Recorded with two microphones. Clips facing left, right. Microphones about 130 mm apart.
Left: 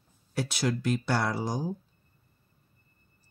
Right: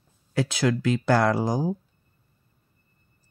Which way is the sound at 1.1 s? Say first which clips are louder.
Right 7 dB; 90° right.